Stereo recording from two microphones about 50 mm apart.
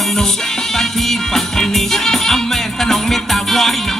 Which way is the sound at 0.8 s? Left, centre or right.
Centre.